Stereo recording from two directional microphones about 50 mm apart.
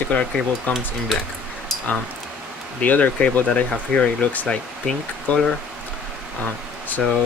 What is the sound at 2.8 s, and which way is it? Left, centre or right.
Speech, left.